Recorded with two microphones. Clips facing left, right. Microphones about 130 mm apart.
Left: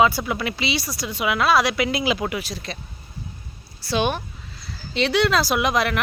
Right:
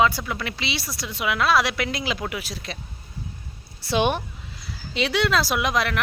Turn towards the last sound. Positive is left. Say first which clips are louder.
# left 2 dB
turn(degrees=0)  # may be behind; listen again after turning